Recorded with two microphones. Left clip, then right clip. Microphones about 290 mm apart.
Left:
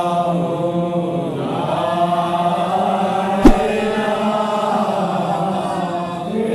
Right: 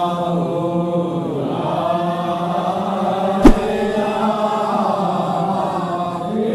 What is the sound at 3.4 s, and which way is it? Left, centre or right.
Chant, centre.